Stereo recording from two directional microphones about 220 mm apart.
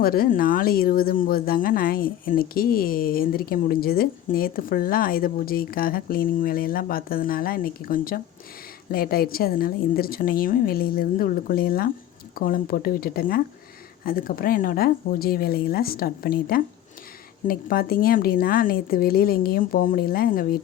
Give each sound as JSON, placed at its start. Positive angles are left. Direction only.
{"t": 0.0, "sound": "a woman's voice", "side_deg": 40}